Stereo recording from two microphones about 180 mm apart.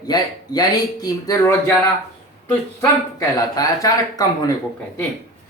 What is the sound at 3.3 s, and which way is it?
Speech, 20° left (ahead or behind).